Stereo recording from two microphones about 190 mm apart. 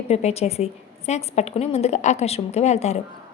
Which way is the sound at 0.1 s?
35° left (ahead or behind).